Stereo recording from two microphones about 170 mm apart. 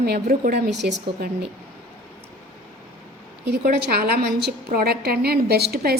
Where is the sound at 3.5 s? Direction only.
65° right (ahead or behind).